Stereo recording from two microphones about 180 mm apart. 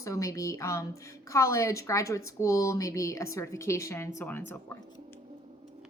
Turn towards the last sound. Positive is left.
turn(degrees=10)  # may be behind; listen again after turning